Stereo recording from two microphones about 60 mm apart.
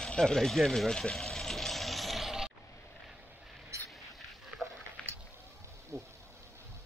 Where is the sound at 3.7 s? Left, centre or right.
Right.